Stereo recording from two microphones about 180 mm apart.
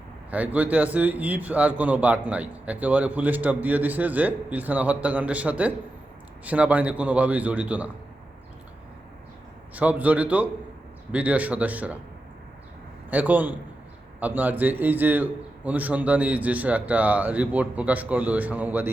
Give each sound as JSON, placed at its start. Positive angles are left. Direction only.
{"t": 0.3, "sound": "a man's voice", "side_deg": -10}
{"t": 9.7, "sound": "a man's voice", "side_deg": -10}
{"t": 13.1, "sound": "a man's voice", "side_deg": -10}